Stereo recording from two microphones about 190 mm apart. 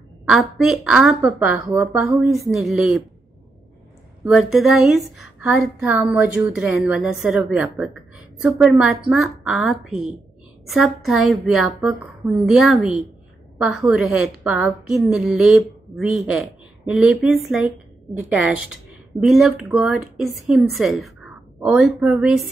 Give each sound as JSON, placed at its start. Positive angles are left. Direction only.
{"t": 0.2, "sound": "quack", "side_deg": -5}
{"t": 0.8, "sound": "a woman's voice", "side_deg": -5}
{"t": 4.2, "sound": "a woman's voice", "side_deg": 0}